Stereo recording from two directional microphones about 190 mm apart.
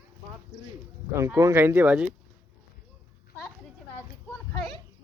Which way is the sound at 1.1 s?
15° right (ahead or behind).